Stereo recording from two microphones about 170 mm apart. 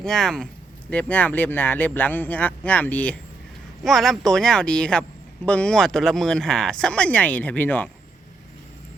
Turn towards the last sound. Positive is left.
turn(degrees=10)  # may be behind; listen again after turning